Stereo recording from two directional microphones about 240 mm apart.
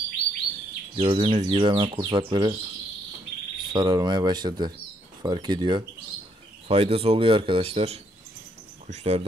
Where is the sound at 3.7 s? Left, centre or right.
Centre.